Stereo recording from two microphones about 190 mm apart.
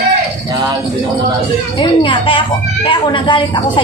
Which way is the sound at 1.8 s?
25° left (ahead or behind).